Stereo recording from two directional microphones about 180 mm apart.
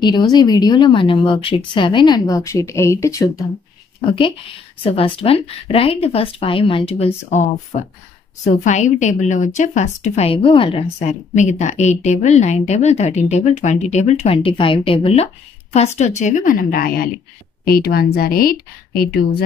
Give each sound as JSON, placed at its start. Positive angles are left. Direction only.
{"t": 0.0, "sound": "speech", "side_deg": 25}
{"t": 4.0, "sound": "a woman's voice", "side_deg": 30}
{"t": 16.0, "sound": "a woman's voice", "side_deg": 40}